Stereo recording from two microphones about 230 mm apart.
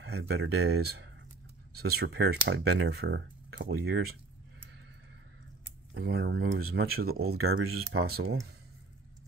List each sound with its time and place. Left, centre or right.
0.0 s speech: right
0.7 s speech: right
5.9 s speech: right
7.3 s speech: right
8.1 s speech: right